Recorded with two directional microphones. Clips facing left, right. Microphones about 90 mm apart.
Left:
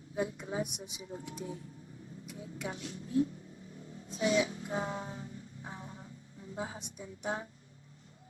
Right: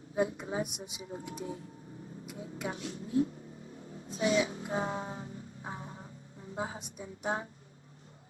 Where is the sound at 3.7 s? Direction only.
35° right (ahead or behind).